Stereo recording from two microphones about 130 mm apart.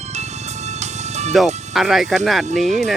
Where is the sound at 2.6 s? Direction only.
65° right (ahead or behind).